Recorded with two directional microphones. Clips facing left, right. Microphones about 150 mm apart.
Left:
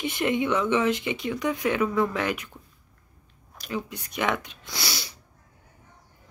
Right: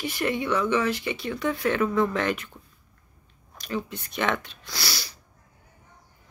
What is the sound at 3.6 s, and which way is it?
Speech, 10° left (ahead or behind).